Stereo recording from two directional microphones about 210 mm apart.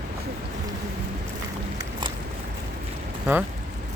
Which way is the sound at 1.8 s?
20° right (ahead or behind).